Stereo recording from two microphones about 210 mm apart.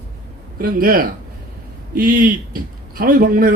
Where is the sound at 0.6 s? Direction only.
45° right (ahead or behind).